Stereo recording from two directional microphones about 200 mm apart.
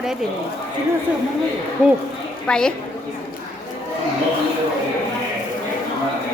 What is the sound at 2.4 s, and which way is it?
Speech, 5° left (ahead or behind).